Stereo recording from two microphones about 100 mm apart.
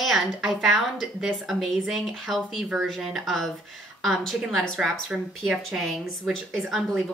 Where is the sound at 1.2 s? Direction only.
Centre (ahead or behind).